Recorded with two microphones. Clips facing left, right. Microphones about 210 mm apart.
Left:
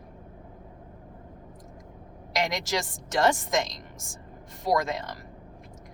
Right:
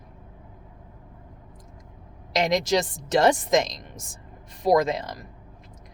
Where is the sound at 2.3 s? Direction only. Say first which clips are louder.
Right 6 dB; 20° right (ahead or behind).